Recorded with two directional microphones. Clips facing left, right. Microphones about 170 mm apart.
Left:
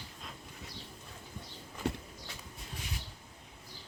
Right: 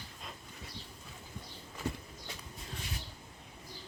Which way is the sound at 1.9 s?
70° left (ahead or behind).